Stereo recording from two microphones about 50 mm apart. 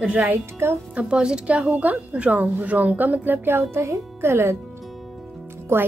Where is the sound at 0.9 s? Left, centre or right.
Centre; by 4.6 s right.